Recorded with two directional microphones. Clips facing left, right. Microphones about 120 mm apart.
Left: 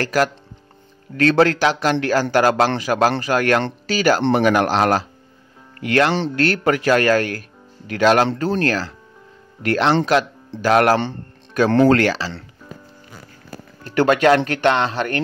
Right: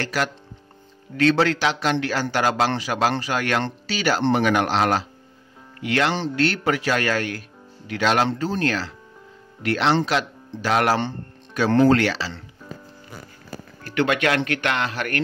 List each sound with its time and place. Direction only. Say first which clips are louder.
0.0 s speech: left 6 dB; 45° left (ahead or behind)
11.7 s speech: left 2 dB; 85° left
12.0 s speech: left 4 dB; 45° left (ahead or behind)
13.9 s speech: left 6 dB; 35° left (ahead or behind)